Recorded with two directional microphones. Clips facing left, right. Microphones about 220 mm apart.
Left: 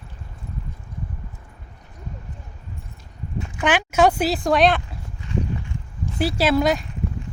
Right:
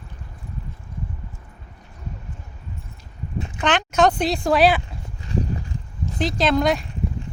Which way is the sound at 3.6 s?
10° left (ahead or behind).